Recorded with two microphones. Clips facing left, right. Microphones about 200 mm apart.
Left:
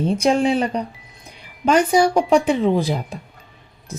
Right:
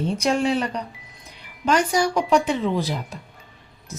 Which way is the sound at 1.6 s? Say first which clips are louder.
Left 5 dB; 55° left (ahead or behind).